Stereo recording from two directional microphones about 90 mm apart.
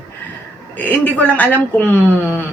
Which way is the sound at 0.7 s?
20° left (ahead or behind).